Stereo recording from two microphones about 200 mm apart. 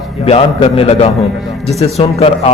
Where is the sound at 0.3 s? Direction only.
30° left (ahead or behind).